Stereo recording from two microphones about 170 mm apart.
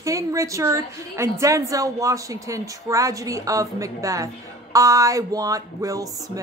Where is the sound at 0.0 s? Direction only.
20° right (ahead or behind).